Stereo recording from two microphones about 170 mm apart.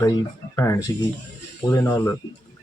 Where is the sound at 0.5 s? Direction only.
20° left (ahead or behind).